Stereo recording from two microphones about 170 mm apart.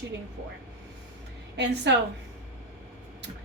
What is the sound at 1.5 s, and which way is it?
Speech, 90° right.